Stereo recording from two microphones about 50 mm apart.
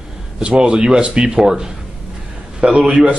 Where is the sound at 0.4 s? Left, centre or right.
Right.